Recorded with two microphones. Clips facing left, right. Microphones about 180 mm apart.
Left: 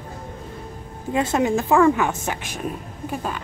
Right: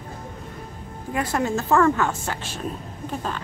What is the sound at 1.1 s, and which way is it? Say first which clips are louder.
Speech: left 4 dB; 20° left (ahead or behind).